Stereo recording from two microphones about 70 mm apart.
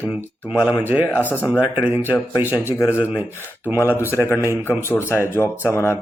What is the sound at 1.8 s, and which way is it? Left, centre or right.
Speech, right.